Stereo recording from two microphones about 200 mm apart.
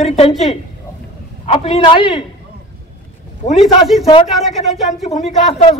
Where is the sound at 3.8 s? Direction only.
Centre (ahead or behind).